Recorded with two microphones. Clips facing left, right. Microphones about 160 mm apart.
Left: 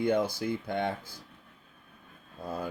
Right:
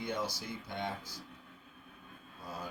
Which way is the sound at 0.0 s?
55° left (ahead or behind).